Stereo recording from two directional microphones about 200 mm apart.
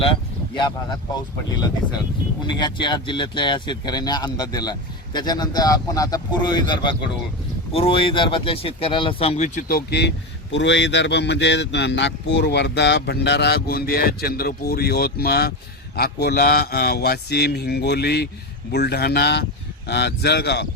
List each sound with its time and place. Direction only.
0.0 s speech: 25° left (ahead or behind); by 10.1 s 50° left (ahead or behind)
10.5 s speech: 65° left (ahead or behind)